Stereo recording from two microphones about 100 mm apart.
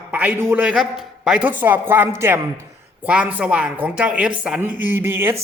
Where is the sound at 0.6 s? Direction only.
5° right (ahead or behind); by 2.4 s 25° right (ahead or behind).